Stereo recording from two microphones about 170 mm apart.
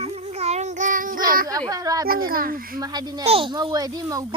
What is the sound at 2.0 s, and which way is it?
Speech, 60° right (ahead or behind).